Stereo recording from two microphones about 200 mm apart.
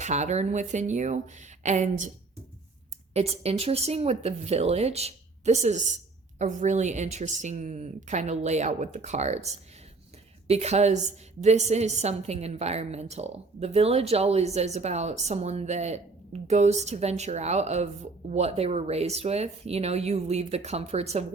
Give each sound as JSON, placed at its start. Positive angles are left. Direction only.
{"t": 0.0, "sound": "a woman's voice", "side_deg": -35}
{"t": 3.1, "sound": "a woman's voice", "side_deg": -30}